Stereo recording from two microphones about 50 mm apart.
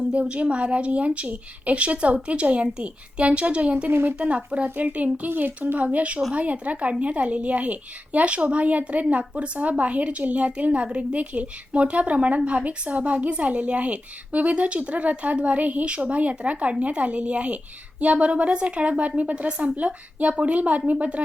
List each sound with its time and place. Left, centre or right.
0.1 s a woman's voice: right
5.3 s speech: right
5.7 s a woman's voice: right